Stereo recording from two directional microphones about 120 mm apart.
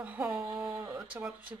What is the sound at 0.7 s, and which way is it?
Speech, 25° right (ahead or behind).